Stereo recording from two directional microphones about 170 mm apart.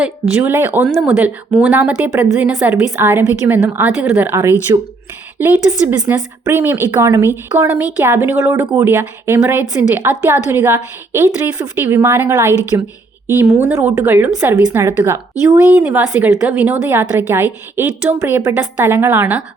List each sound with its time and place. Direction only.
0.0 s a woman's voice: 10° right (ahead or behind)
4.7 s speech: 20° right (ahead or behind)
6.1 s a woman's voice: 15° right (ahead or behind)